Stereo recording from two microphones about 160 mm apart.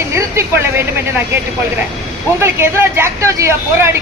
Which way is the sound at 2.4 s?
15° right (ahead or behind).